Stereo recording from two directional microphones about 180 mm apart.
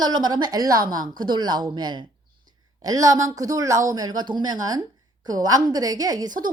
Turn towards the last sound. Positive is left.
turn(degrees=-25)  # may be behind; listen again after turning